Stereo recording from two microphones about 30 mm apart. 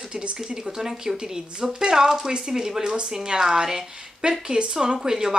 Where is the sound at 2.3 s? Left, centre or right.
Right.